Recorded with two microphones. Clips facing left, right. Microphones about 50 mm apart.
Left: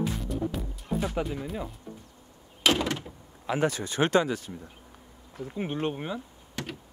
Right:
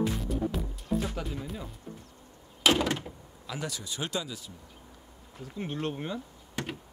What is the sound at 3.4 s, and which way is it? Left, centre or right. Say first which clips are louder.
Speech: left 10 dB; left.